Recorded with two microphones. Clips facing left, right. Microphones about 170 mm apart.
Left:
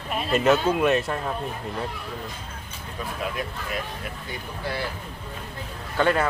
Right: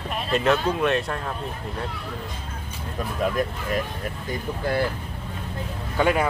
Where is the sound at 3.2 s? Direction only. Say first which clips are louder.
Right 8 dB; 45° right (ahead or behind).